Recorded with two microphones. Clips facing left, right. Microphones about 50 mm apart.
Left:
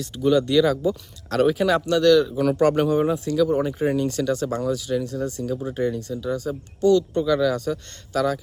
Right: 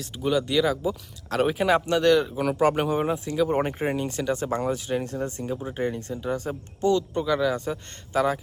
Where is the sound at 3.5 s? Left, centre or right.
Right.